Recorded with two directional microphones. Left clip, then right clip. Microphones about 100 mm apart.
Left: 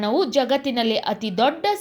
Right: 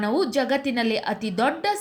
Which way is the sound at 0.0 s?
10° left (ahead or behind).